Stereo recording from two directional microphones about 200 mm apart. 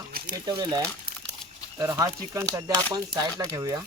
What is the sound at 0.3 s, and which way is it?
Speech, 20° right (ahead or behind).